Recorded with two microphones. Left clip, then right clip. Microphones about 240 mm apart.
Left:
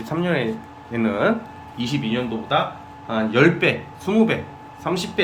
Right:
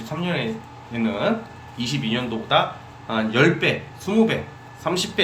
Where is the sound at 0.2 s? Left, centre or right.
Centre.